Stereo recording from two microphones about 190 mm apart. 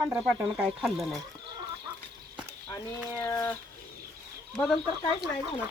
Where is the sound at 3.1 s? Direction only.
15° left (ahead or behind).